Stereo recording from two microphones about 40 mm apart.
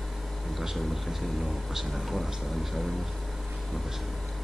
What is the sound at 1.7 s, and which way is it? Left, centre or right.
Speech, centre.